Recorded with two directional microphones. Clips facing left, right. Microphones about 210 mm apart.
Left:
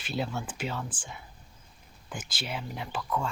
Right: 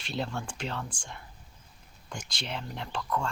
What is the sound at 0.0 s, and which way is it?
Speech, 5° left (ahead or behind).